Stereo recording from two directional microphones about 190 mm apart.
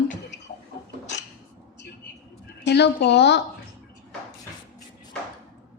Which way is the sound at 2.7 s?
65° left (ahead or behind).